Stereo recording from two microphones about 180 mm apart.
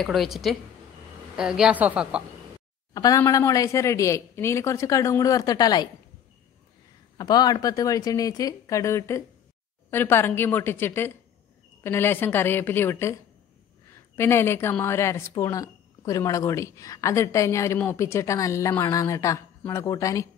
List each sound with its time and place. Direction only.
0.0 s a woman's voice: centre (ahead or behind)
2.9 s a woman's voice: 20° left (ahead or behind)
7.2 s a woman's voice: 25° left (ahead or behind)
14.1 s a woman's voice: 15° left (ahead or behind)